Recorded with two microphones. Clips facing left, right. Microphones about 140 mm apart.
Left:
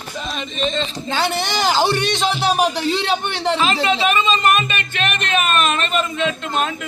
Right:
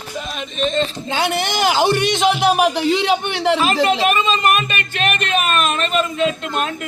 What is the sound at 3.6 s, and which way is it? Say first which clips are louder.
Speech: even; 45° right (ahead or behind).